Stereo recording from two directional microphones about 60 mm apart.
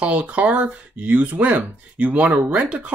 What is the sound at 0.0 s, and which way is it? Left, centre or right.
Speech, right.